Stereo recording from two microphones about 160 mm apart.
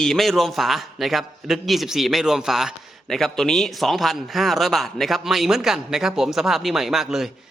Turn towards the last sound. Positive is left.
turn(degrees=0)  # may be behind; listen again after turning